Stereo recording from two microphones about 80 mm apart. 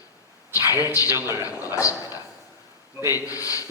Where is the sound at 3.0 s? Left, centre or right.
Left.